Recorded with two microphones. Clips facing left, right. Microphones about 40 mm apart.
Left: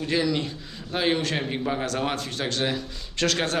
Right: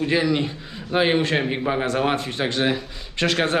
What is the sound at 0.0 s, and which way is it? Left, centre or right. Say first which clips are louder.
A man's voice: right 4 dB; right.